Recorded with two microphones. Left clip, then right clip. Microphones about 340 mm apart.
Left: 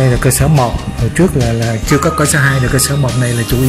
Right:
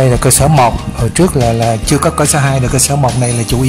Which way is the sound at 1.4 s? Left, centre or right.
Centre.